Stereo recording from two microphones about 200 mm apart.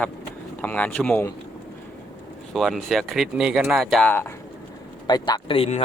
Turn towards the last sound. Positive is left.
turn(degrees=30)  # may be behind; listen again after turning